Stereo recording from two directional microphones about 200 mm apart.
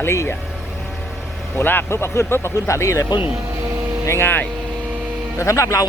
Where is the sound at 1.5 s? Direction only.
10° left (ahead or behind).